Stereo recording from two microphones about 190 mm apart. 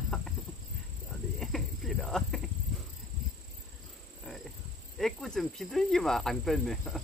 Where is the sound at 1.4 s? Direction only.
Centre (ahead or behind).